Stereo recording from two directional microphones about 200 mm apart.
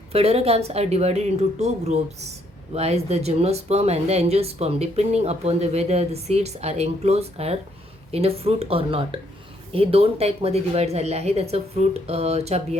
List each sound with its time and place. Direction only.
0.1 s speech: 30° right (ahead or behind)